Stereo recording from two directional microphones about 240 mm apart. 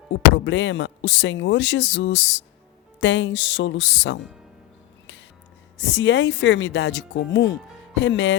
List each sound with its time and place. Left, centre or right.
0.4 s speech: left
5.8 s speech: left